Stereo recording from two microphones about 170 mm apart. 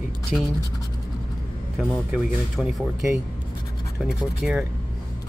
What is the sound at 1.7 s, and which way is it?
Speech, centre (ahead or behind).